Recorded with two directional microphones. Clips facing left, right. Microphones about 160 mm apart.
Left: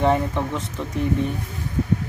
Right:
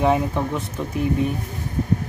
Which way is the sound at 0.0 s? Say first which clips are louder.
Right 1 dB; 10° right (ahead or behind).